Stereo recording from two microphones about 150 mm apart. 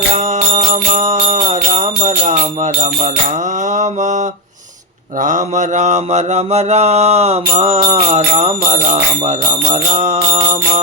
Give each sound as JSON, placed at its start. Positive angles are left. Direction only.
{"t": 0.5, "sound": "music", "side_deg": -50}
{"t": 5.2, "sound": "mantra", "side_deg": -55}